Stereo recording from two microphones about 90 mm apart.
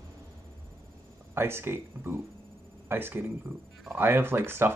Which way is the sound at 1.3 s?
25° right (ahead or behind).